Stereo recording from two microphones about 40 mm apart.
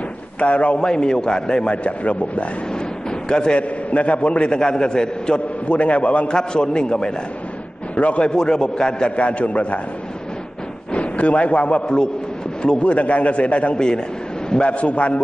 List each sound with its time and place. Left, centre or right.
0.4 s a man's voice: left
0.7 s a man's voice: left
1.9 s a man's voice: left
3.3 s a man's voice: left
3.9 s a man's voice: left
6.2 s a man's voice: left
7.9 s speech: left
8.2 s a man's voice: centre
9.1 s a man's voice: left
10.9 s a man's voice: left
13.7 s a man's voice: left